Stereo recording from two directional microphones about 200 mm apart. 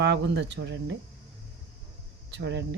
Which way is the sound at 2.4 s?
60° right (ahead or behind).